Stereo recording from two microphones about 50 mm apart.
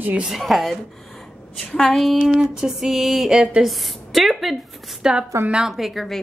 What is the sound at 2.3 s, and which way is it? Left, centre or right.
Music, centre.